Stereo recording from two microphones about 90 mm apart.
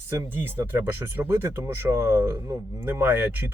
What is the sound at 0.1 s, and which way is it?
Speech, 30° right (ahead or behind).